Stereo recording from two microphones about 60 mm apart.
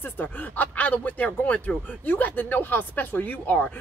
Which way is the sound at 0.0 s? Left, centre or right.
Left.